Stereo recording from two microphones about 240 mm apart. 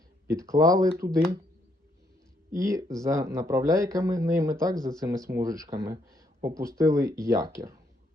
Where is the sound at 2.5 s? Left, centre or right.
Centre.